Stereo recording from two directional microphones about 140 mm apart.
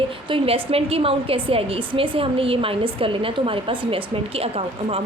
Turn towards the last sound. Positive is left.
turn(degrees=-45)  # may be behind; listen again after turning